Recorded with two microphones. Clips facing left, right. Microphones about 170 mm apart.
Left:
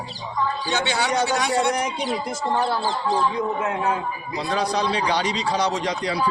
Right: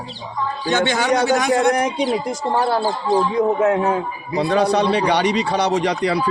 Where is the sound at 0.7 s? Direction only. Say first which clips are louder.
Right 6 dB; 45° right (ahead or behind).